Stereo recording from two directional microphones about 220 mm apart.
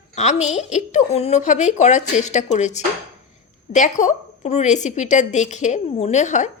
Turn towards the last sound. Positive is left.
turn(degrees=30)  # may be behind; listen again after turning